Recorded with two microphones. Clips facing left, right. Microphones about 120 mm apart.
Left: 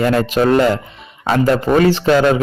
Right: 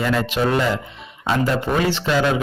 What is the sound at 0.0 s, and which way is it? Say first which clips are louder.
Speech: left 6 dB; 55° left (ahead or behind).